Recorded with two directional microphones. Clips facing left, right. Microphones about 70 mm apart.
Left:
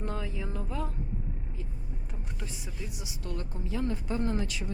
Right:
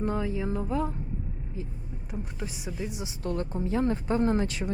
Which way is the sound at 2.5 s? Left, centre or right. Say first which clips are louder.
Right 7 dB; centre.